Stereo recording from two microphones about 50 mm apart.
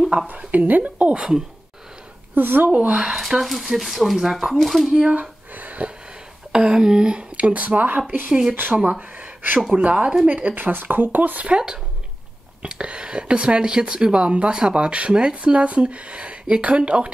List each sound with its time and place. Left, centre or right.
0.5 s a woman's voice: right
2.3 s speech: right
2.7 s speech: right
3.0 s speech: centre
5.5 s a sound: right
6.5 s speech: centre; by 8.0 s right
8.3 s speech: centre; by 11.4 s right
11.4 s speech: centre